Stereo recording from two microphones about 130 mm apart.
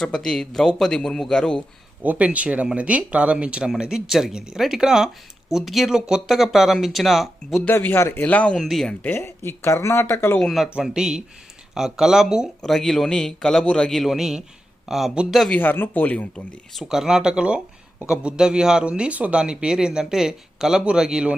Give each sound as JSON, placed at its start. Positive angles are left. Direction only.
{"t": 0.0, "sound": "speech", "side_deg": 5}
{"t": 2.0, "sound": "speech", "side_deg": -10}
{"t": 7.7, "sound": "speech", "side_deg": 15}
{"t": 9.0, "sound": "speech", "side_deg": 15}
{"t": 10.4, "sound": "speech", "side_deg": 0}
{"t": 15.5, "sound": "speech", "side_deg": 15}
{"t": 16.7, "sound": "speech", "side_deg": -5}